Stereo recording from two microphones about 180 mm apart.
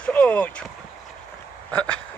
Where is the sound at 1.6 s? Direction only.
10° left (ahead or behind).